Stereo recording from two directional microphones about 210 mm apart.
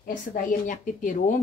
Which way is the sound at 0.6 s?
35° left (ahead or behind).